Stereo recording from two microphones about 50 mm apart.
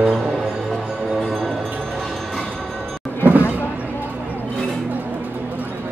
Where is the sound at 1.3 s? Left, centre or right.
Centre.